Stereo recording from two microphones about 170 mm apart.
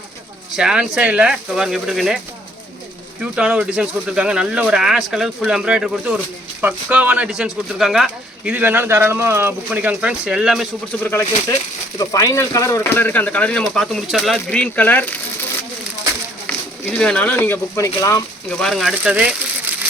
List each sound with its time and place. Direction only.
0.5 s speech: 5° right (ahead or behind)
3.3 s speech: 5° right (ahead or behind)
11.0 s speech: 15° left (ahead or behind)
16.5 s speech: 5° left (ahead or behind)
18.6 s speech: centre (ahead or behind)